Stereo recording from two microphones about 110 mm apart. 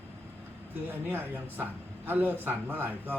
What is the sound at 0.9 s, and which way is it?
A man's voice, 20° right (ahead or behind).